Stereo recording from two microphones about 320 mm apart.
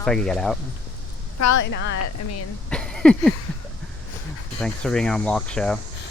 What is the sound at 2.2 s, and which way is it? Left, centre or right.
Speech, left.